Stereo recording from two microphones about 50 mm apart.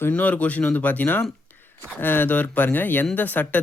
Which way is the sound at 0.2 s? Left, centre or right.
Left.